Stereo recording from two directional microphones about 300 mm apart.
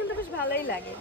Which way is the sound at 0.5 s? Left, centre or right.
Left.